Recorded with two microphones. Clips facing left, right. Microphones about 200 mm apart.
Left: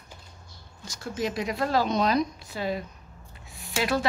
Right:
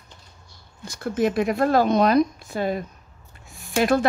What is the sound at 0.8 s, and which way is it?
A woman's voice, 55° right (ahead or behind).